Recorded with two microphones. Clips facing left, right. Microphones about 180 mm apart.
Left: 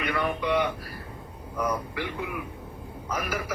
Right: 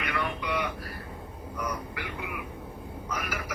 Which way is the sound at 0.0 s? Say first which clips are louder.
Left 4 dB; 25° left (ahead or behind).